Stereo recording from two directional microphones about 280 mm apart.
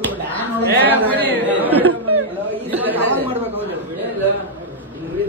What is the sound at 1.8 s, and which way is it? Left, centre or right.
Chatter, right.